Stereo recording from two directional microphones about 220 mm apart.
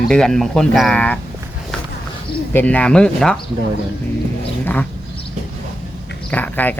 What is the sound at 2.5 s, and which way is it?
Speech, 10° left (ahead or behind).